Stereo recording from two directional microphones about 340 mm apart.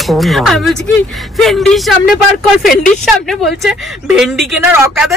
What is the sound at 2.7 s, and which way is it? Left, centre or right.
Speech, left.